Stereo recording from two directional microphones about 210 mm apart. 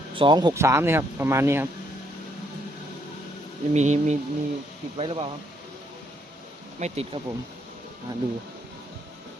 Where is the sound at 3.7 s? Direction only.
35° right (ahead or behind).